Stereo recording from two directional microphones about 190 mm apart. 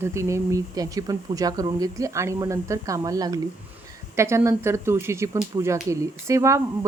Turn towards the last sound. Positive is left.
turn(degrees=-15)  # may be behind; listen again after turning